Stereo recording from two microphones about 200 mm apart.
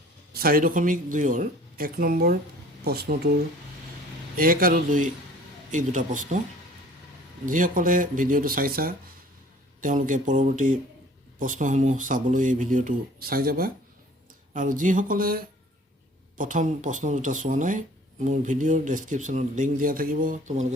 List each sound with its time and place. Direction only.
0.3 s speech: 45° right (ahead or behind)
7.4 s speech: 40° right (ahead or behind)